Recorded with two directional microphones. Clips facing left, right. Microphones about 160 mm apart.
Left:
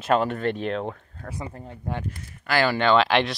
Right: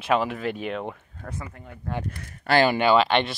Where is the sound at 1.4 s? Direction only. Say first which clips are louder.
Left 4 dB; 30° left (ahead or behind).